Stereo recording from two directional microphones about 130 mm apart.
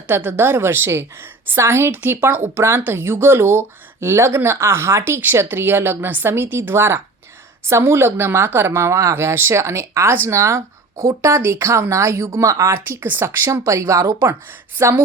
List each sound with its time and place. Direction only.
0.1 s a woman's voice: 15° right (ahead or behind)